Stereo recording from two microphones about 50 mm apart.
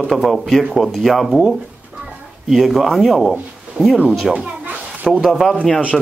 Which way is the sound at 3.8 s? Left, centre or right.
Left.